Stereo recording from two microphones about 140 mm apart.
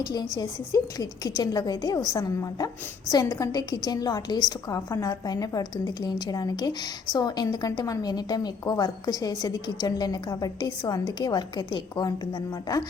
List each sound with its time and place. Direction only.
0.0 s a woman's voice: 30° left (ahead or behind)